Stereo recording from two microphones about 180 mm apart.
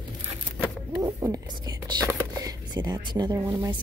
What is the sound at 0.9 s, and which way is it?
Speech, 20° right (ahead or behind).